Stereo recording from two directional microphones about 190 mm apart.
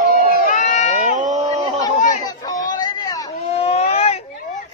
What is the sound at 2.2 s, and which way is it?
Chatter, 20° left (ahead or behind).